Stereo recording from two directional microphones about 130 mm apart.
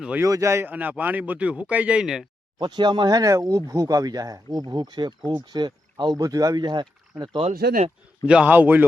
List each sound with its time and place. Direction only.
0.0 s speech: 10° right (ahead or behind)
0.3 s speech: 25° right (ahead or behind); by 2.2 s 5° right (ahead or behind)
2.6 s speech: 35° right (ahead or behind)
8.3 s speech: 10° right (ahead or behind)